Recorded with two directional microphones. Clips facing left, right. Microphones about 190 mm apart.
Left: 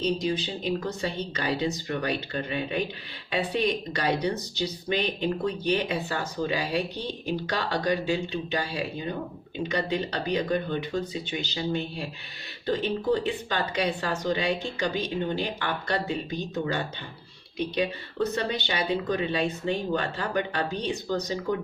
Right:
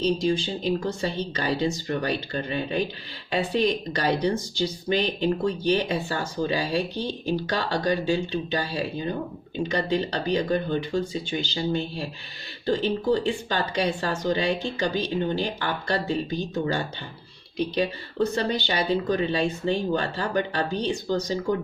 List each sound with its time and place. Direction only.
0.0 s speech: 30° right (ahead or behind)